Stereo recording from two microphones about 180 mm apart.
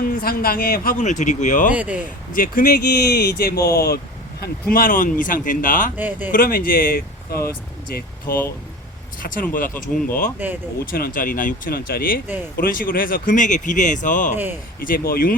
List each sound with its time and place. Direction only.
0.0 s speech: 55° left (ahead or behind)
1.7 s speech: 10° right (ahead or behind)
2.3 s speech: 50° left (ahead or behind)
6.0 s speech: 10° right (ahead or behind)
6.3 s speech: 55° left (ahead or behind)
9.7 s speech: 10° left (ahead or behind)
10.4 s speech: 10° right (ahead or behind)
10.9 s speech: 50° left (ahead or behind)